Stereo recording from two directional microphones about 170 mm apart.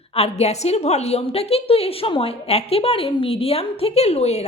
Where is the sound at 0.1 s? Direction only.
35° left (ahead or behind).